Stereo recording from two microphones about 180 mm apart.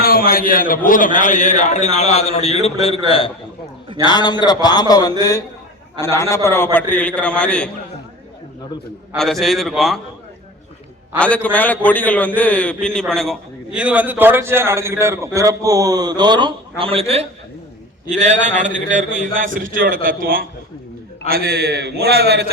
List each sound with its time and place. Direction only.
0.0 s a man's voice: 55° left (ahead or behind); by 7.7 s 5° left (ahead or behind)
9.1 s a man's voice: centre (ahead or behind)
11.4 s a man's voice: 10° left (ahead or behind); by 22.5 s 65° right (ahead or behind)